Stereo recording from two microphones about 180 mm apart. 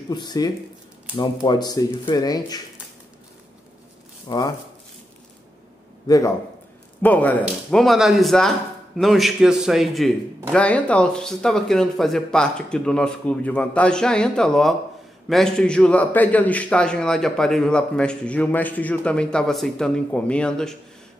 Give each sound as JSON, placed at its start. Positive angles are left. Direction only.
{"t": 0.1, "sound": "speech", "side_deg": 25}
{"t": 4.3, "sound": "speech", "side_deg": 25}
{"t": 6.0, "sound": "a man's voice", "side_deg": 20}
{"t": 7.0, "sound": "a man's voice", "side_deg": 10}